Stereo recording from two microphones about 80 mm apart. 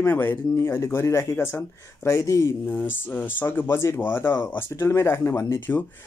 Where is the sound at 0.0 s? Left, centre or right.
Left.